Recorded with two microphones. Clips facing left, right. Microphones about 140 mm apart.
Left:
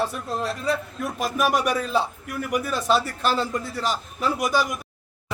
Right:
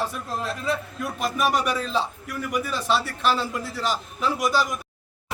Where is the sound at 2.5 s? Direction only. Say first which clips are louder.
Left 2 dB; 45° left (ahead or behind).